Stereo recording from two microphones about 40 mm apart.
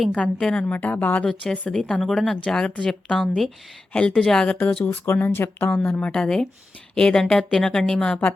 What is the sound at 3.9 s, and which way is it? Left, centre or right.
Speech, left.